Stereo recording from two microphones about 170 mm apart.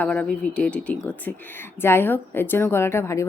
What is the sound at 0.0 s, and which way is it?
Speech, 5° left (ahead or behind).